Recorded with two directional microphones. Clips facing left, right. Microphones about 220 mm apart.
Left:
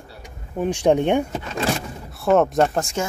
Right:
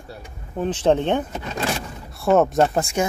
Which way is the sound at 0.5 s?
10° left (ahead or behind).